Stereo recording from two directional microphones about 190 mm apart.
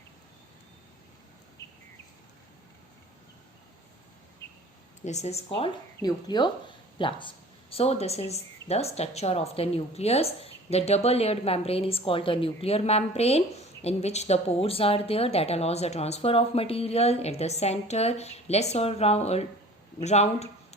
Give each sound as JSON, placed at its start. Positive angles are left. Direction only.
{"t": 5.0, "sound": "speech", "side_deg": 35}